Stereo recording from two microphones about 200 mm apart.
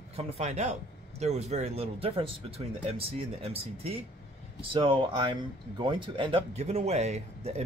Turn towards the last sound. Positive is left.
turn(degrees=-35)  # may be behind; listen again after turning